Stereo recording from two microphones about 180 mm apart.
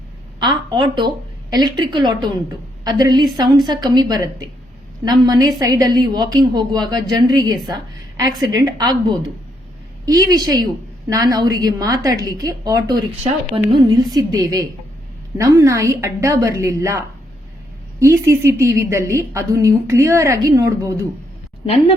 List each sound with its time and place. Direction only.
0.3 s a woman's voice: 25° right (ahead or behind)
18.0 s a woman's voice: 15° right (ahead or behind)